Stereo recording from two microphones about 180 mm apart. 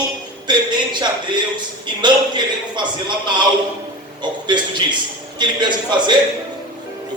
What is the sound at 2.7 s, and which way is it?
Speech, 25° right (ahead or behind).